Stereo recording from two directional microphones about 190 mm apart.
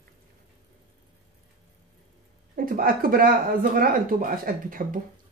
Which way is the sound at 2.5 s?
50° right (ahead or behind).